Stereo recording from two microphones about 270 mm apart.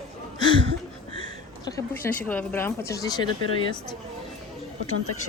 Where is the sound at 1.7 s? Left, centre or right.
Centre.